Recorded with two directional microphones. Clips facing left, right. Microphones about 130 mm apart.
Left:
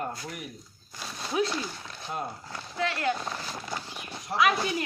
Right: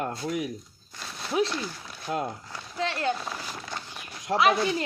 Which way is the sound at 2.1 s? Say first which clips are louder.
Right 5 dB; 90° right.